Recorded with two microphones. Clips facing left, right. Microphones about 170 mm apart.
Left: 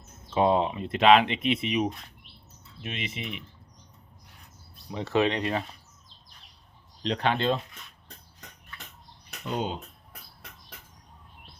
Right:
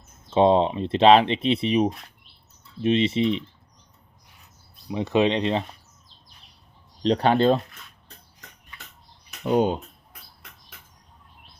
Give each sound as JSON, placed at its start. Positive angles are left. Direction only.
{"t": 0.3, "sound": "speech", "side_deg": -25}
{"t": 4.9, "sound": "speech", "side_deg": -15}
{"t": 7.0, "sound": "speech", "side_deg": -35}
{"t": 9.4, "sound": "speech", "side_deg": -50}